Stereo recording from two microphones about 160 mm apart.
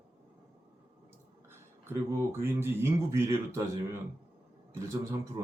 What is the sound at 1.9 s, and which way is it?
A man's voice, 15° right (ahead or behind).